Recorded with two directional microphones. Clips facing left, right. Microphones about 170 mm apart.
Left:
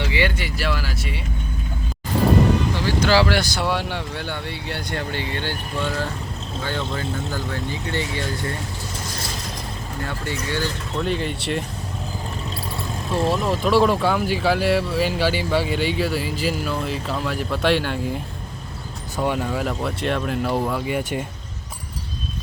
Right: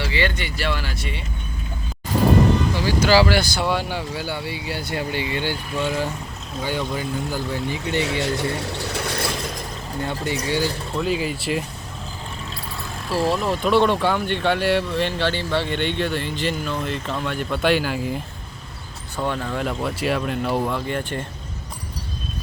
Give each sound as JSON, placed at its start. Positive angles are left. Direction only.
{"t": 0.0, "sound": "speech", "side_deg": 15}
{"t": 2.8, "sound": "speech", "side_deg": -5}
{"t": 8.2, "sound": "speech", "side_deg": -75}
{"t": 10.0, "sound": "speech", "side_deg": -15}
{"t": 10.9, "sound": "speech", "side_deg": -5}
{"t": 13.1, "sound": "speech", "side_deg": 0}
{"t": 19.2, "sound": "speech", "side_deg": 10}